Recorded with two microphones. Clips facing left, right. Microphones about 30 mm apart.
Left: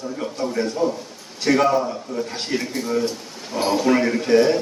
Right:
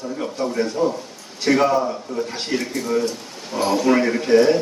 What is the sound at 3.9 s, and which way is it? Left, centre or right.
Speech, centre.